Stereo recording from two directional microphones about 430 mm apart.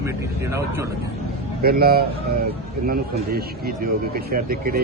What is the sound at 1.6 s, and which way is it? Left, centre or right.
A man's voice, right.